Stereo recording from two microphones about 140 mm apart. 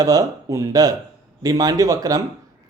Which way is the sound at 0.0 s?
25° right (ahead or behind).